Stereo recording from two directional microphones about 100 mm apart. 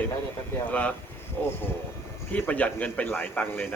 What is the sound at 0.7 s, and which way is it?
A man's voice, 10° left (ahead or behind).